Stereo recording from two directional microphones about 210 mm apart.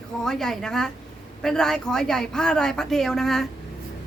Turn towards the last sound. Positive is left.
turn(degrees=0)  # may be behind; listen again after turning